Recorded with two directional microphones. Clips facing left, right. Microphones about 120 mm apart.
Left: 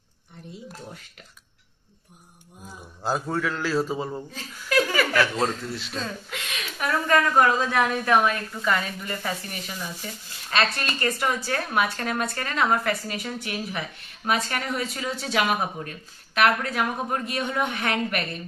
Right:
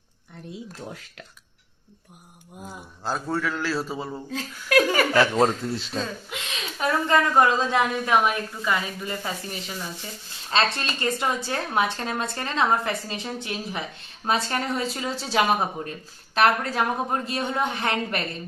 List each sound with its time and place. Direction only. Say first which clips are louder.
0.9 s speech: right 3 dB; 90° right
3.0 s a man's voice: left 1 dB; 5° left (ahead or behind)
4.3 s speech: right 5 dB; 65° right (ahead or behind)
5.1 s a woman's voice: right 4 dB; 30° right (ahead or behind)